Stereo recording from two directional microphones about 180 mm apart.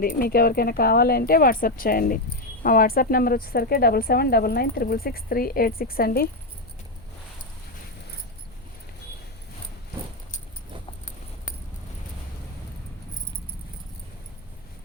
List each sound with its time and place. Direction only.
0.0 s speech: 55° left (ahead or behind)